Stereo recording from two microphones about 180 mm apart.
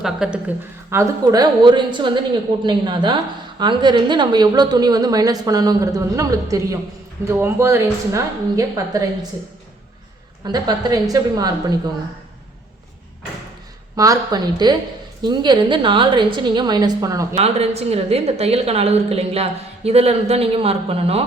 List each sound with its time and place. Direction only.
0.0 s a woman's voice: 5° right (ahead or behind)
10.4 s a woman's voice: 20° right (ahead or behind)
13.9 s a woman's voice: 20° right (ahead or behind)
17.4 s a woman's voice: 35° right (ahead or behind)